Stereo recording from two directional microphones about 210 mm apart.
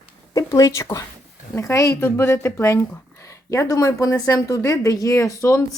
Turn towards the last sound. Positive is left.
turn(degrees=15)  # may be behind; listen again after turning